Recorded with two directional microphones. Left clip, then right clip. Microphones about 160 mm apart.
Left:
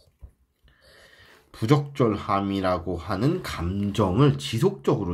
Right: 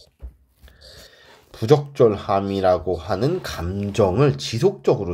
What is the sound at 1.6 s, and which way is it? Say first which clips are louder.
Speech: right 7 dB; 50° right (ahead or behind).